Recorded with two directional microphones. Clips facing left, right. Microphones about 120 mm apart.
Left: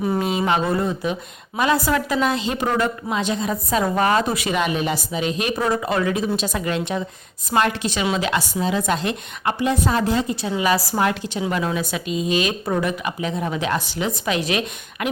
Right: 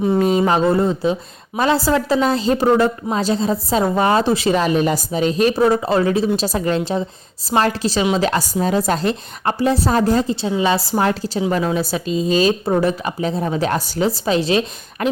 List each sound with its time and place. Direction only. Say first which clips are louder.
0.2 s a woman's voice: right 5 dB; 40° right (ahead or behind)
10.6 s a woman's voice: right 1 dB; 25° right (ahead or behind)